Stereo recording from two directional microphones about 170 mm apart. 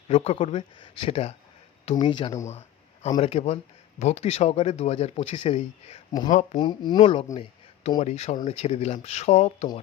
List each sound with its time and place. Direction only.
0.1 s speech: 35° left (ahead or behind)
2.5 s a sound: 40° left (ahead or behind)
3.2 s speech: 35° left (ahead or behind)
6.6 s speech: 25° left (ahead or behind)